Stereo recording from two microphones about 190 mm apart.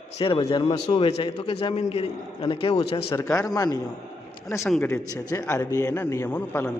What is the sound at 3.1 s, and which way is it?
Speech, 20° left (ahead or behind).